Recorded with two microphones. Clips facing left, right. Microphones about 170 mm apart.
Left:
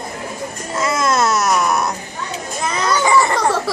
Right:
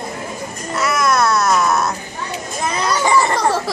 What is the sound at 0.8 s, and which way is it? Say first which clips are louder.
Baby cry: even; 25° left (ahead or behind).